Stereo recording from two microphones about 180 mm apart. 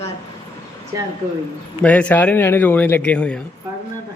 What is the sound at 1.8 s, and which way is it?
A man's voice, 5° left (ahead or behind).